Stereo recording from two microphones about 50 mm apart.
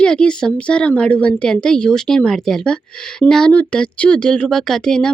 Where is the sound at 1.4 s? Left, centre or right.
Centre.